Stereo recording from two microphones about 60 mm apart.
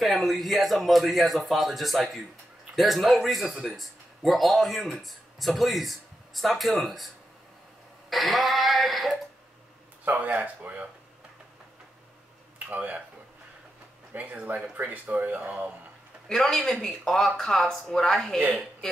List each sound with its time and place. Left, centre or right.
0.0 s speech: centre
8.1 s a sound: centre
10.0 s speech: right
12.5 s speech: right
14.1 s speech: right
16.3 s speech: centre